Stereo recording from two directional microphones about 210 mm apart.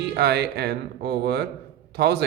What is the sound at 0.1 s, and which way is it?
A man's voice, 50° right (ahead or behind).